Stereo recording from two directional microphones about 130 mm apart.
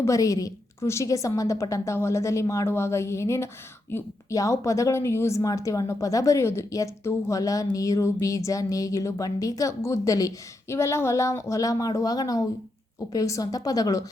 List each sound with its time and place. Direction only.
0.0 s a woman's voice: 25° left (ahead or behind)